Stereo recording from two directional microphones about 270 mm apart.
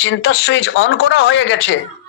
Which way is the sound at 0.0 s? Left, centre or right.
Left.